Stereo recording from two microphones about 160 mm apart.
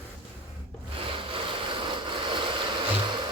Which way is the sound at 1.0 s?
35° right (ahead or behind).